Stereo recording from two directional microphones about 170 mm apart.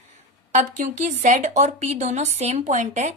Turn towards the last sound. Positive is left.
turn(degrees=-45)  # may be behind; listen again after turning